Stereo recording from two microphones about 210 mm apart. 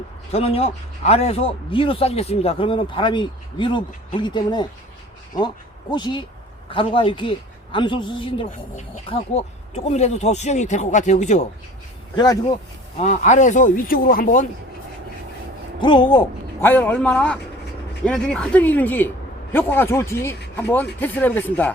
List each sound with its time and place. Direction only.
0.3 s speech: 30° left (ahead or behind)
5.9 s speech: 20° left (ahead or behind)
12.1 s speech: 20° left (ahead or behind)
13.0 s speech: 35° left (ahead or behind)
15.8 s speech: 20° left (ahead or behind)
16.6 s a man's voice: 10° left (ahead or behind)